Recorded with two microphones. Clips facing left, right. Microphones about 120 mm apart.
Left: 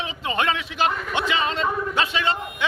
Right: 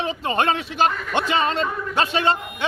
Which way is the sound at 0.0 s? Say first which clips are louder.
Right 3 dB; 40° right (ahead or behind).